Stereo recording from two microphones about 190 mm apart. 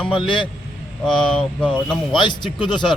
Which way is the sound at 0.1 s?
25° left (ahead or behind).